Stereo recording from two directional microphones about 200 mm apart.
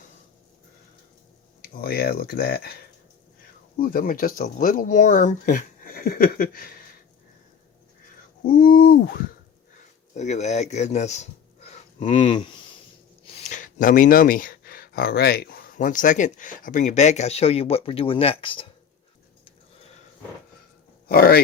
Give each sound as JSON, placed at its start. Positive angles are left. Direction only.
{"t": 1.8, "sound": "speech", "side_deg": 50}
{"t": 3.8, "sound": "speech", "side_deg": 45}
{"t": 8.4, "sound": "speech", "side_deg": 45}
{"t": 10.2, "sound": "speech", "side_deg": 35}
{"t": 13.2, "sound": "speech", "side_deg": 35}
{"t": 21.1, "sound": "speech", "side_deg": 50}